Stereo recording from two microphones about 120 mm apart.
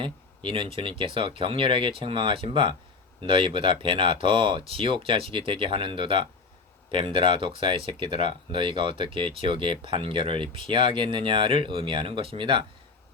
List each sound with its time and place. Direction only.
0.0 s speech: 45° right (ahead or behind)